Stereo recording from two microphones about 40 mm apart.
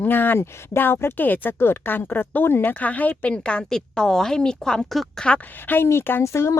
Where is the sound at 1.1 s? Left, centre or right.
Left.